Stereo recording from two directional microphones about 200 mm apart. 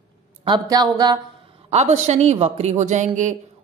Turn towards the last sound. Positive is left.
turn(degrees=-35)  # may be behind; listen again after turning